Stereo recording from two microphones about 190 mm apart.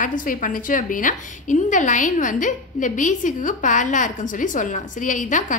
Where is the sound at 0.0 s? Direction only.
45° left (ahead or behind).